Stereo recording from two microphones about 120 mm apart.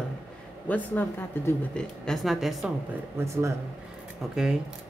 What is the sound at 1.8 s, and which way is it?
Speech, centre (ahead or behind).